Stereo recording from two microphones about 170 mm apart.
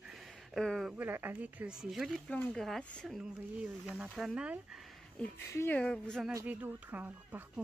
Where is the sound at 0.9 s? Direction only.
10° right (ahead or behind); by 3.2 s 5° left (ahead or behind).